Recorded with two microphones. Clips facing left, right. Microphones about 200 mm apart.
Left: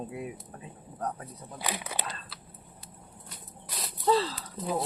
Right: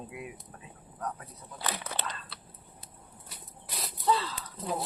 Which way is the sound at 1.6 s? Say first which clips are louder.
Left 1 dB; 10° left (ahead or behind).